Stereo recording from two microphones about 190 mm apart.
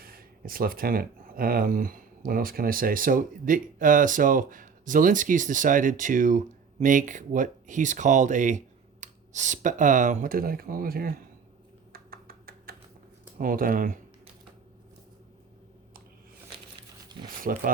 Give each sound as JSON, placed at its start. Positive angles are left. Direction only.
{"t": 0.0, "sound": "speech", "side_deg": -50}
{"t": 11.9, "sound": "computer keyboard", "side_deg": -50}
{"t": 13.4, "sound": "speech", "side_deg": -45}
{"t": 17.2, "sound": "speech", "side_deg": -50}